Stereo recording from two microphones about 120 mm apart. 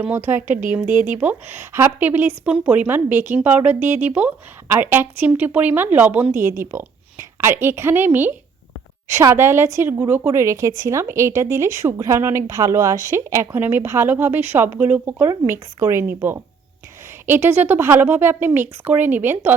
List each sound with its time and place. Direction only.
0.0 s a woman's voice: 20° right (ahead or behind)